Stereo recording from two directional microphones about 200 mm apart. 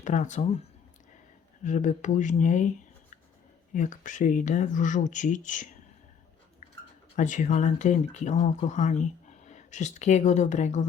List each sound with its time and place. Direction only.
0.0 s speech: 35° left (ahead or behind)
1.6 s speech: 40° left (ahead or behind)
7.2 s speech: 40° left (ahead or behind)